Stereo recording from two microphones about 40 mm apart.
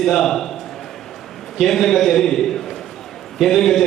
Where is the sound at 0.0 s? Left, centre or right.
Centre.